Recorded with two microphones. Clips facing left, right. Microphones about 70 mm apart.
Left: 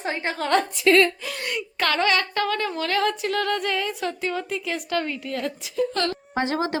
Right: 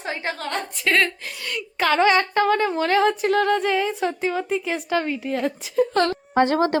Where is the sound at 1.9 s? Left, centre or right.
Right.